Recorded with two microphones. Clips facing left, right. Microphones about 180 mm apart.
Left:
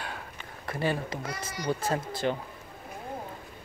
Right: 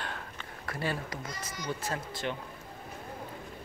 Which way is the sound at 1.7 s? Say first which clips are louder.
Left 7 dB; 35° left (ahead or behind).